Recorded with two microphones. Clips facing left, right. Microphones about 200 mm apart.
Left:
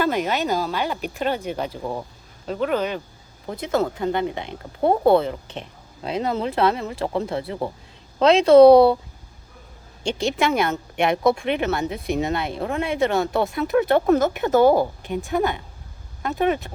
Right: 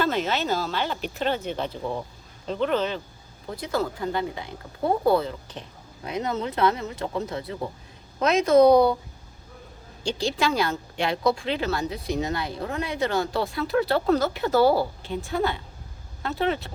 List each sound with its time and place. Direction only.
0.0 s speech: 15° left (ahead or behind)
3.5 s speech: 25° left (ahead or behind)
7.0 s speech: 75° left (ahead or behind)
7.3 s speech: 30° left (ahead or behind)
8.6 s speech: 70° left (ahead or behind)
10.0 s speech: 25° left (ahead or behind)